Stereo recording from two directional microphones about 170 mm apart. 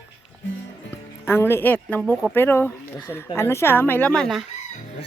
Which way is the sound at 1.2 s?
15° left (ahead or behind).